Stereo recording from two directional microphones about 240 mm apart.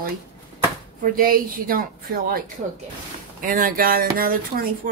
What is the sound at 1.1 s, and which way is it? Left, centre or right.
A woman's voice, right.